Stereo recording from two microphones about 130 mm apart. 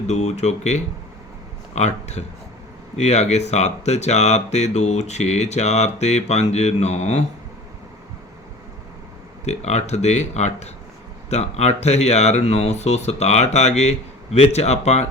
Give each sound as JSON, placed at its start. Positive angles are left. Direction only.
{"t": 0.1, "sound": "speech", "side_deg": 60}
{"t": 9.5, "sound": "speech", "side_deg": 60}